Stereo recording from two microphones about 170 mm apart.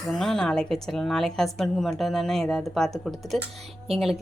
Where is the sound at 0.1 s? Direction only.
Centre (ahead or behind).